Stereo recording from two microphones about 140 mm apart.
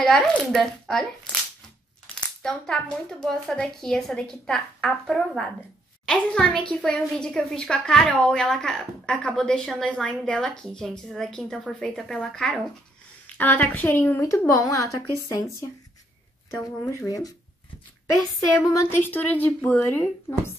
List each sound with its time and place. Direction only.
0.0 s a woman's voice: 5° left (ahead or behind); by 15.4 s 25° left (ahead or behind)
16.4 s a woman's voice: 10° left (ahead or behind)
17.0 s a woman's voice: 25° left (ahead or behind)
18.5 s a woman's voice: 20° left (ahead or behind)